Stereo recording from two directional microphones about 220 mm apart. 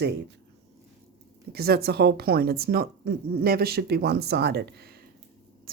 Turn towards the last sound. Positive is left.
turn(degrees=-50)  # may be behind; listen again after turning